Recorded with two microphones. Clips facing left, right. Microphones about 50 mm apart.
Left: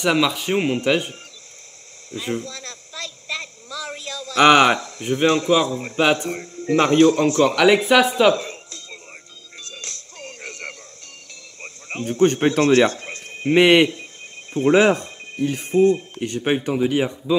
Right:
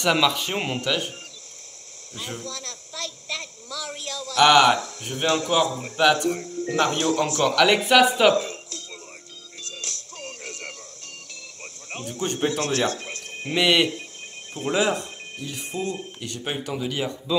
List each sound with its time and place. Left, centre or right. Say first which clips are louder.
0.0 s a man's voice: left 2 dB; centre
0.7 s a man's voice: left 6 dB; left
2.1 s speech: left 7 dB; left
7.6 s speech: left 1 dB; centre
8.4 s music: right 4 dB; left
11.6 s speech: left 7 dB; left